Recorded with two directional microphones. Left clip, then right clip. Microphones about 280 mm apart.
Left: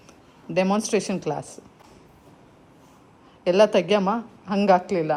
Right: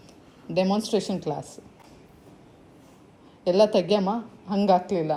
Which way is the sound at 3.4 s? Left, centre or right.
Left.